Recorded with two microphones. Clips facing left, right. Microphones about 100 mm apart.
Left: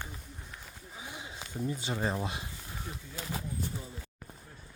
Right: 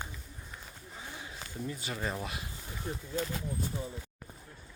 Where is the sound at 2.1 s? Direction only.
25° left (ahead or behind).